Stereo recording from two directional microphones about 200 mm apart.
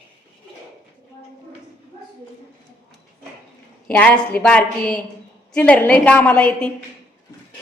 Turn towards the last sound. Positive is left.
turn(degrees=5)  # may be behind; listen again after turning